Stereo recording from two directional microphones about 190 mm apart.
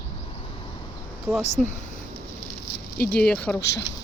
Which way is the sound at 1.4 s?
35° left (ahead or behind).